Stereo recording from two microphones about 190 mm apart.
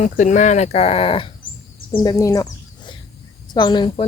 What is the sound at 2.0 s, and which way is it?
Bird, 20° left (ahead or behind).